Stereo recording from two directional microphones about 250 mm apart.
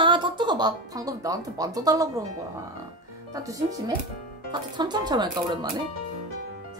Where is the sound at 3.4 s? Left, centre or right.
Centre.